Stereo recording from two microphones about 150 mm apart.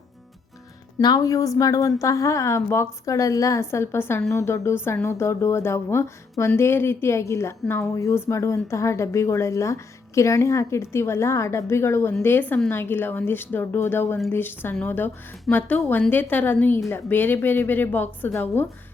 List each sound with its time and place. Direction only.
1.0 s a woman's voice: 25° left (ahead or behind)